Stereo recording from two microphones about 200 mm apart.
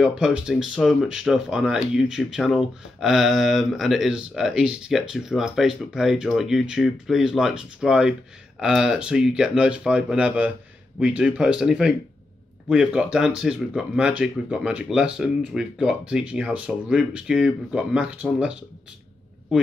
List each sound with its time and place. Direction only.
0.0 s speech: 5° right (ahead or behind)